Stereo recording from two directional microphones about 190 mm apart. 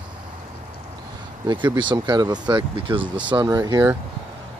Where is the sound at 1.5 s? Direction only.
25° right (ahead or behind).